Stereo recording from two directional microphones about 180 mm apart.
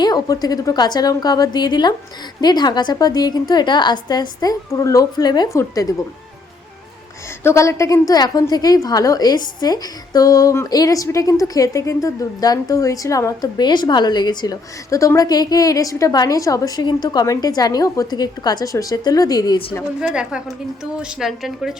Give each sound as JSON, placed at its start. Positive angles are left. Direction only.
{"t": 0.0, "sound": "a woman's voice", "side_deg": 20}
{"t": 7.4, "sound": "a woman's voice", "side_deg": 15}
{"t": 20.0, "sound": "a woman's voice", "side_deg": -5}